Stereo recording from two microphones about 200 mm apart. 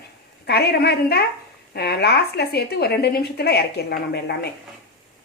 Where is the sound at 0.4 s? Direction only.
55° left (ahead or behind).